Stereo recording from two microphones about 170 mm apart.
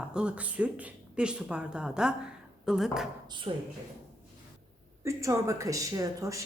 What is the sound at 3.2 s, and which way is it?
Speech, 25° right (ahead or behind).